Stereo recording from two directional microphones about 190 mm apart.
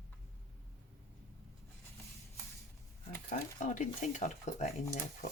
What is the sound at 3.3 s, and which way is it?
Speech, 40° left (ahead or behind).